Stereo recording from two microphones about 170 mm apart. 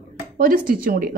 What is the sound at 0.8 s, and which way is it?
Speech, 60° right (ahead or behind).